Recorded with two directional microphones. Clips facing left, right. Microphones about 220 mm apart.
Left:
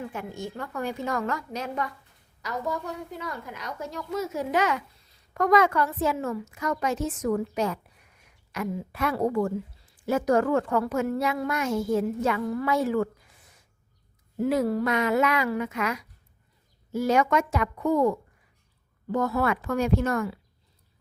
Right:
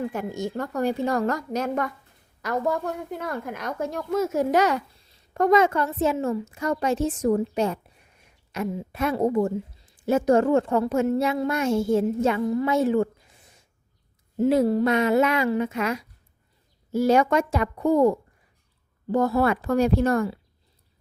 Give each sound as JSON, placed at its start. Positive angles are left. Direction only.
{"t": 0.1, "sound": "a woman's voice", "side_deg": -40}
{"t": 5.3, "sound": "a woman's voice", "side_deg": -25}
{"t": 14.3, "sound": "a woman's voice", "side_deg": -25}